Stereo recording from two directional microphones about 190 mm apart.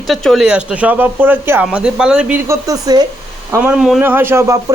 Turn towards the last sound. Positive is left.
turn(degrees=-15)  # may be behind; listen again after turning